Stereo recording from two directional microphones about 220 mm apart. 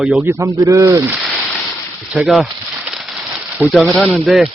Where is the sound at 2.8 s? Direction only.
Centre (ahead or behind).